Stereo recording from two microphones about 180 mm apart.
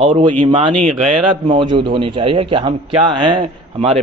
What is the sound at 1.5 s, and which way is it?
A man's voice, 30° right (ahead or behind).